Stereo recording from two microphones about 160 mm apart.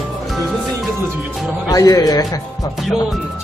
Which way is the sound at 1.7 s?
20° left (ahead or behind).